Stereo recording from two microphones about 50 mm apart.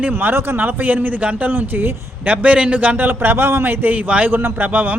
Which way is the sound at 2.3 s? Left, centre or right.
Right.